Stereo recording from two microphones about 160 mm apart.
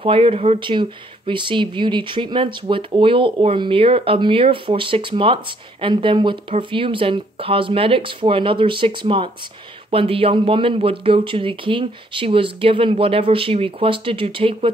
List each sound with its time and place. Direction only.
0.0 s speech: 35° right (ahead or behind)